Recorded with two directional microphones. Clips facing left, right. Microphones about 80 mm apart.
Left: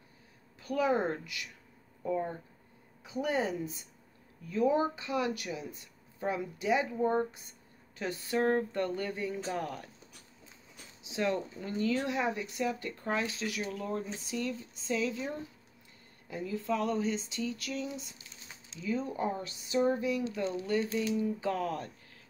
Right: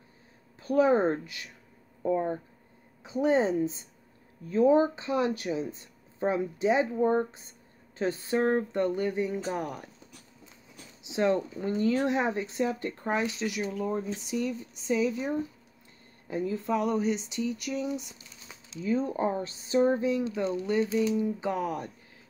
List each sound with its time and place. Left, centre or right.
0.6 s speech: right
11.1 s speech: right
16.3 s speech: right
18.8 s speech: right; by 21.9 s centre